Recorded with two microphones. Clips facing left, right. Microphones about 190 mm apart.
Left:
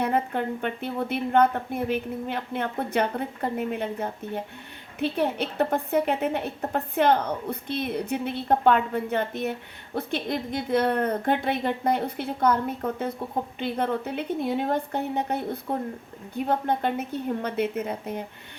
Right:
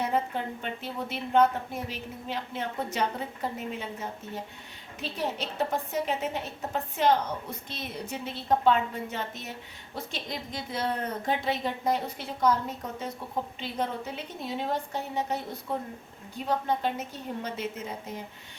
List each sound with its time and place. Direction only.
0.0 s a woman's voice: 55° left (ahead or behind)